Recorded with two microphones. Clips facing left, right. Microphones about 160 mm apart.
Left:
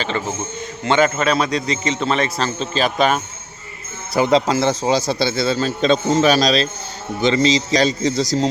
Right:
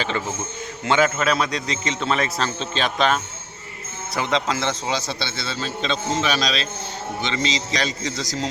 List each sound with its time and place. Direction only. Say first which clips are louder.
0.9 s a man's voice: left 3 dB; 5° right (ahead or behind)
4.1 s a man's voice: left 8 dB; 35° left (ahead or behind)